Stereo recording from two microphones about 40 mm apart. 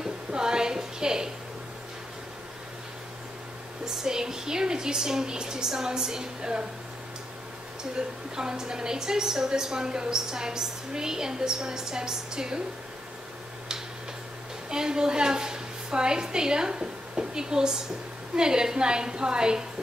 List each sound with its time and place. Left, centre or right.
0.3 s a sound: centre
3.8 s a woman's voice: centre
8.4 s a woman's voice: centre
14.7 s a woman's voice: centre